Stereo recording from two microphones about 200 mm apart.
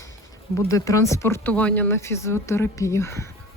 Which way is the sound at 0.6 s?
15° left (ahead or behind).